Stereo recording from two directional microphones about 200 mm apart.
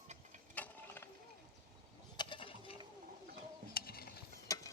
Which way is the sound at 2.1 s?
25° left (ahead or behind).